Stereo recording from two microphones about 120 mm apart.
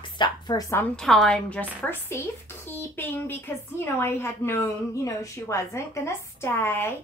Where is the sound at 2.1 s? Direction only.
20° left (ahead or behind).